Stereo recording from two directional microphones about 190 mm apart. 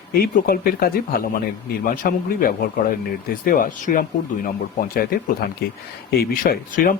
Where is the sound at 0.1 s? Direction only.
50° left (ahead or behind).